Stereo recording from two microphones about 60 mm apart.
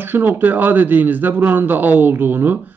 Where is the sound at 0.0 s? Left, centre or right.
Right.